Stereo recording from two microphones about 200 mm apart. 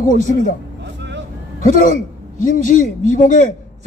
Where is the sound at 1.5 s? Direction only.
40° left (ahead or behind).